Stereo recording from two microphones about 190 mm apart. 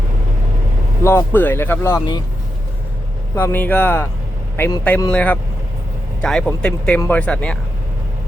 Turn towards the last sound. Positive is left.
turn(degrees=5)  # may be behind; listen again after turning